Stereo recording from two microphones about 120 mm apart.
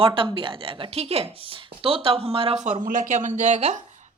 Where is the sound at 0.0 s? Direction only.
45° right (ahead or behind).